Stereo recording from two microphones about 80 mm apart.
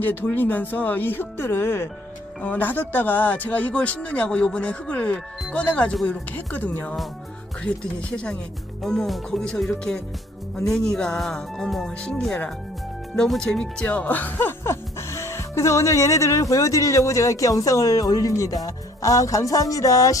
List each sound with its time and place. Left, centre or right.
0.0 s speech: left